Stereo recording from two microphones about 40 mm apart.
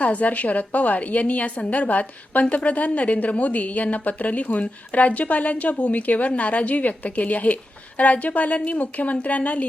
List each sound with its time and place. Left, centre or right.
0.0 s a woman's voice: left